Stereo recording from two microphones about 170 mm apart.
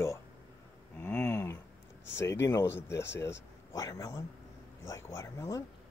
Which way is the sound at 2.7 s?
90° left.